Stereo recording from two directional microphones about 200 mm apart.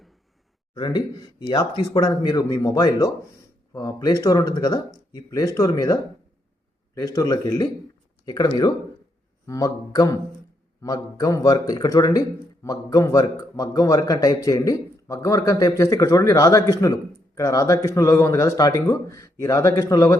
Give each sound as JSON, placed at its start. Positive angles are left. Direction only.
{"t": 0.7, "sound": "a man's voice", "side_deg": 20}